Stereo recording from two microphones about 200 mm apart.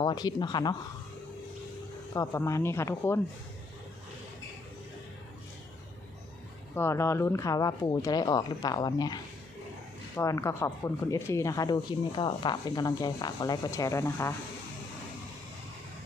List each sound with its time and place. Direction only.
0.0 s speech: 20° left (ahead or behind)
2.1 s speech: 15° left (ahead or behind)
6.7 s speech: 15° left (ahead or behind)
10.2 s speech: 15° left (ahead or behind)